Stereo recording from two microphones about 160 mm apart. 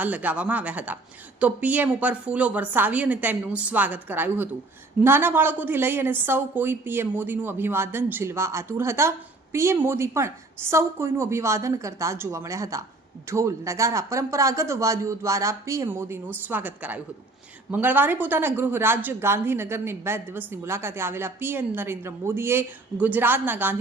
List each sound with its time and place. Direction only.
0.0 s a woman's voice: 10° right (ahead or behind)